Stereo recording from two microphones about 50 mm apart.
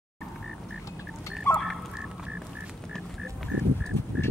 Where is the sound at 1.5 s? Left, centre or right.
Left.